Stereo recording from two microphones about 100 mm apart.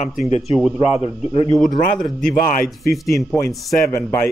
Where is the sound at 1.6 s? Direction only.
Centre (ahead or behind).